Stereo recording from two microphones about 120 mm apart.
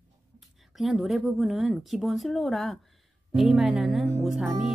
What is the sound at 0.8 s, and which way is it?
Speech, centre (ahead or behind).